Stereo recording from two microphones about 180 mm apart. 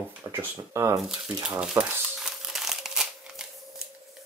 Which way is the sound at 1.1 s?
5° right (ahead or behind).